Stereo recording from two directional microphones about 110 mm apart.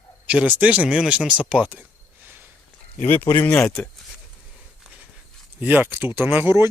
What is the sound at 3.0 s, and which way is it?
Speech, 15° left (ahead or behind).